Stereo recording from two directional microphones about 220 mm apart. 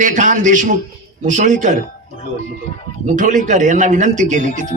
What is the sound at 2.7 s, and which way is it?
Speech, 25° left (ahead or behind).